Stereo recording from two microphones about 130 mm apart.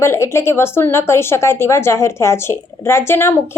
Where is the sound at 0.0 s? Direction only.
20° left (ahead or behind).